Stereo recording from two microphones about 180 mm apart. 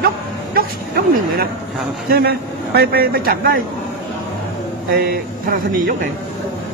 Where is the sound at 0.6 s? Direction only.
55° right (ahead or behind).